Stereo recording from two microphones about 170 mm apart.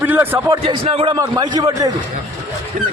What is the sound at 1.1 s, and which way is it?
Speech, 25° right (ahead or behind).